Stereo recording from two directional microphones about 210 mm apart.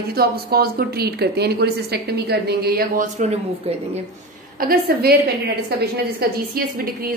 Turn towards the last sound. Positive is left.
turn(degrees=-50)  # may be behind; listen again after turning